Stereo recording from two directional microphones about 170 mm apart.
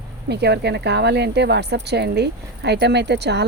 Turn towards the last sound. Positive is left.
turn(degrees=-80)